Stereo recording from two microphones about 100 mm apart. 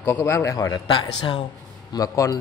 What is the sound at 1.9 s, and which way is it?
Speech, 35° left (ahead or behind).